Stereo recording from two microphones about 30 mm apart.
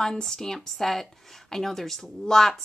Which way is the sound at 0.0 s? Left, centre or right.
Centre.